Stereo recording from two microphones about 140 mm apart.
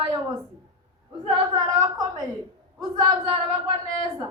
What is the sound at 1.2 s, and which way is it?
A woman's voice, 30° right (ahead or behind).